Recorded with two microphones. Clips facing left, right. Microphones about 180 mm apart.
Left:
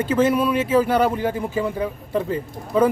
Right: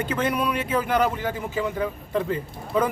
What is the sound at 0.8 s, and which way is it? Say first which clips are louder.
Speech: left 4 dB; 10° left (ahead or behind).